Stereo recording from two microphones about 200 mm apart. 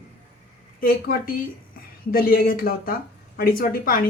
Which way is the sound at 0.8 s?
45° left (ahead or behind).